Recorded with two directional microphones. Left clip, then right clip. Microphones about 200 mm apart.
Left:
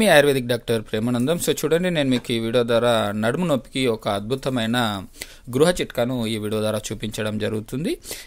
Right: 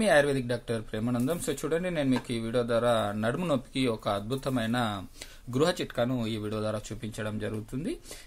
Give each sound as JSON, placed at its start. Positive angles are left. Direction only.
{"t": 0.0, "sound": "speech", "side_deg": 45}